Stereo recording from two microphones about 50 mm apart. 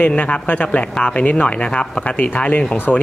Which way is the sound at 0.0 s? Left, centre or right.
Left.